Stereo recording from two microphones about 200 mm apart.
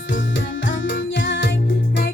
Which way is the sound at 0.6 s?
70° left (ahead or behind).